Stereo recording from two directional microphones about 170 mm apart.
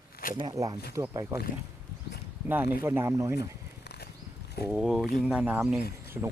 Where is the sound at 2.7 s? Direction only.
15° right (ahead or behind).